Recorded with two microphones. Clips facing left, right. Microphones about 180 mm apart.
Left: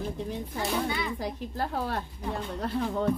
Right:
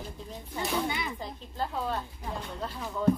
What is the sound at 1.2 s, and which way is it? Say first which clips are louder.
Speech: left 3 dB; 75° left (ahead or behind).